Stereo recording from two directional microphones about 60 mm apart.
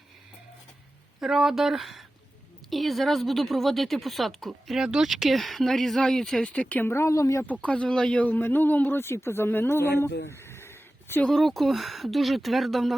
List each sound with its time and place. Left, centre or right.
1.2 s speech: centre
6.4 s speech: left
6.8 s speech: left
7.4 s speech: left
7.9 s a man's voice: centre
8.2 s speech: left
11.3 s speech: centre